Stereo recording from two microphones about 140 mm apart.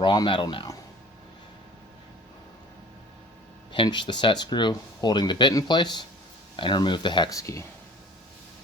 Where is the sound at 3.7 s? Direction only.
35° left (ahead or behind).